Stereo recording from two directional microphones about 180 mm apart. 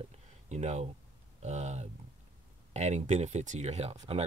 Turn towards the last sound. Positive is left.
turn(degrees=-35)  # may be behind; listen again after turning